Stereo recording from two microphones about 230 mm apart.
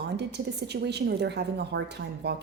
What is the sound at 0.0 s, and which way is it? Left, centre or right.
A woman's voice, right.